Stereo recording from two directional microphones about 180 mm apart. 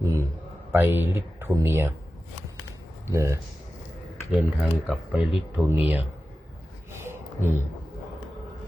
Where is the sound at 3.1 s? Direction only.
15° right (ahead or behind).